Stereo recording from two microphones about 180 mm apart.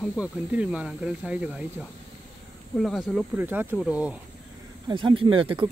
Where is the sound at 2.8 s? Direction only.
Centre (ahead or behind).